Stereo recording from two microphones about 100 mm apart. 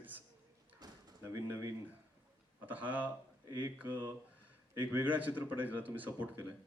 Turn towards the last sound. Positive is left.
turn(degrees=-15)  # may be behind; listen again after turning